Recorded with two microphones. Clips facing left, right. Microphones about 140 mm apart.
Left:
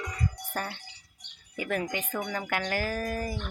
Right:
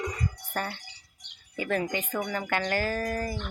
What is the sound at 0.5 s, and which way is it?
Speech, 5° left (ahead or behind).